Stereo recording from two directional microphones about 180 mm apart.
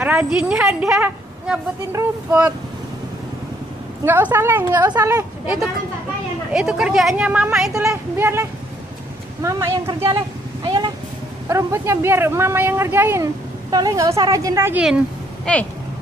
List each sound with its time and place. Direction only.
0.0 s a woman's voice: 10° right (ahead or behind)
4.0 s speech: 10° right (ahead or behind)
6.5 s a woman's voice: 5° right (ahead or behind)
7.7 s speech: 15° right (ahead or behind)
15.5 s a woman's voice: 5° left (ahead or behind)